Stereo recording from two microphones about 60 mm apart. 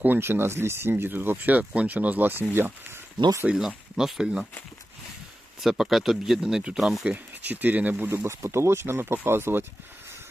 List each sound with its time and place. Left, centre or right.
0.2 s speech: right
3.4 s speech: centre
5.5 s speech: centre
7.0 s speech: right
8.2 s speech: right